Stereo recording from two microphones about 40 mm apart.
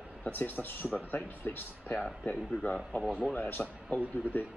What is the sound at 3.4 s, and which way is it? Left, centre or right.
Speech, left.